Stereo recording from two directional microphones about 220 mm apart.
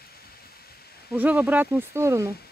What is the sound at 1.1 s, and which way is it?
Speech, 10° right (ahead or behind).